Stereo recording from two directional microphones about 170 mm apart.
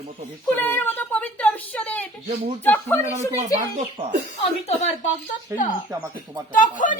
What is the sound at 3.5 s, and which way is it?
Speech, 45° right (ahead or behind).